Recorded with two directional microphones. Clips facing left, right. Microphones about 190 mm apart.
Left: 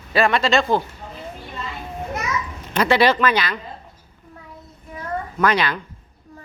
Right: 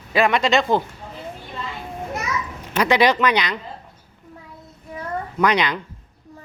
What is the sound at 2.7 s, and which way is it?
Speech, 15° right (ahead or behind).